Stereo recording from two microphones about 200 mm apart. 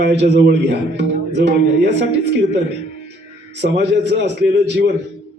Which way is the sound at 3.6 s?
60° right (ahead or behind).